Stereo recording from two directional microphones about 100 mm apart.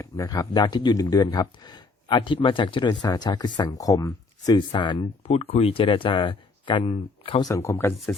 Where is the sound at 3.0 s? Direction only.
40° left (ahead or behind).